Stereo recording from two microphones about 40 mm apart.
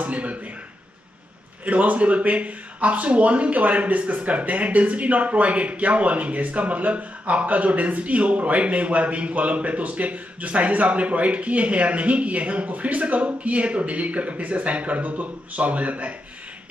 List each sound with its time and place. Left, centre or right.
0.0 s speech: right
1.7 s speech: right